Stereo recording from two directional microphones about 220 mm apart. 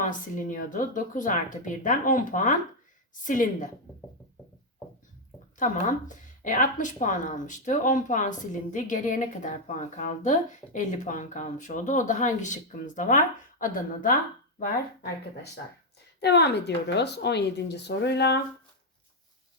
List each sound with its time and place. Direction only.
0.0 s speech: 35° left (ahead or behind)
5.5 s speech: 35° left (ahead or behind)
16.2 s speech: 50° left (ahead or behind)